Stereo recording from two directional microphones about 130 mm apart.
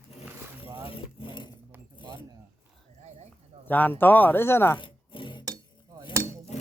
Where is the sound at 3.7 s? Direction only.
15° left (ahead or behind).